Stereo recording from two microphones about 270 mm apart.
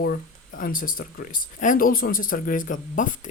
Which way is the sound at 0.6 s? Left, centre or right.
Left.